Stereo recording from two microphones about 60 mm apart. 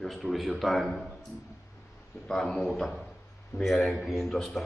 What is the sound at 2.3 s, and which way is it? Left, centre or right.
A man's voice, centre.